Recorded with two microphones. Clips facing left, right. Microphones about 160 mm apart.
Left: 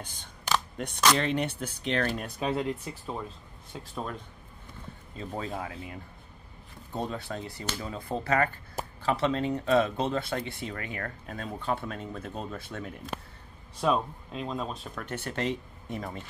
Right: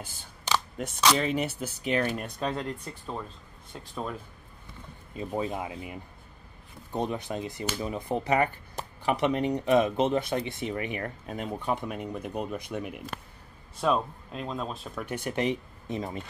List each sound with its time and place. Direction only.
0.7 s speech: centre (ahead or behind)
2.2 s speech: 5° left (ahead or behind)
5.1 s speech: 15° right (ahead or behind)
13.7 s speech: centre (ahead or behind)
15.0 s speech: 15° right (ahead or behind)